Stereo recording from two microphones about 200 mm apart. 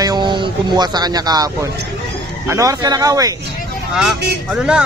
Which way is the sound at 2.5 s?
15° right (ahead or behind).